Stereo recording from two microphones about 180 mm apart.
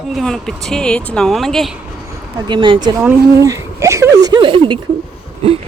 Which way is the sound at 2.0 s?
25° right (ahead or behind).